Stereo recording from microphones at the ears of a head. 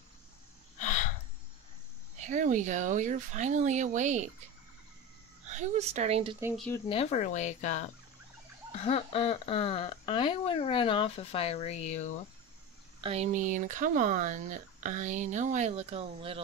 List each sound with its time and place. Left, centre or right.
0.7 s a sound: left
2.1 s a woman's voice: right
6.8 s speech: left
13.1 s speech: right